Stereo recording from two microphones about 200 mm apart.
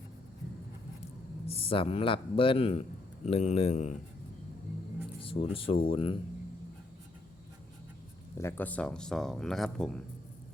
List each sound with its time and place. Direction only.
1.5 s speech: 30° left (ahead or behind)
5.2 s speech: 25° left (ahead or behind)
8.4 s speech: 10° left (ahead or behind)